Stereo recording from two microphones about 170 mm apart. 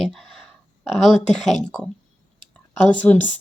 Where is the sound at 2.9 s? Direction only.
10° left (ahead or behind).